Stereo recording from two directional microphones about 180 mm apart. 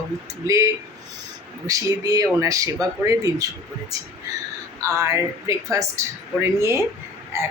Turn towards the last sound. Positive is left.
turn(degrees=-15)  # may be behind; listen again after turning